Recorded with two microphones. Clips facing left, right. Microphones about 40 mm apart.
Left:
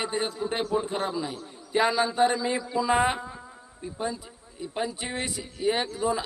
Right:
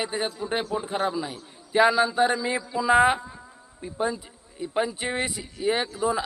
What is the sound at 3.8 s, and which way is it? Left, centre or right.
Speech, centre.